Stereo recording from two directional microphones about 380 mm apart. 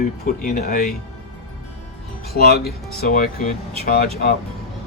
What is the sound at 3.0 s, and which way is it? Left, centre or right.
Speech, left.